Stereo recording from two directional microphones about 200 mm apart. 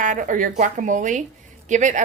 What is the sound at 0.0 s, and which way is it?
A woman's voice, 40° right (ahead or behind).